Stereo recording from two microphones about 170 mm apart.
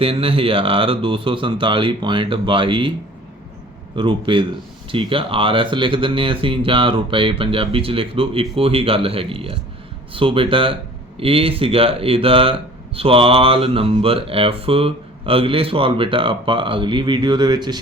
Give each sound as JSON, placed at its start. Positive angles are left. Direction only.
{"t": 0.0, "sound": "speech", "side_deg": -35}
{"t": 3.9, "sound": "a man's voice", "side_deg": -30}